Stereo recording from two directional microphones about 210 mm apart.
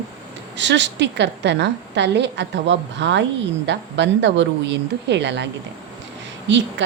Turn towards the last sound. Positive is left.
turn(degrees=-60)  # may be behind; listen again after turning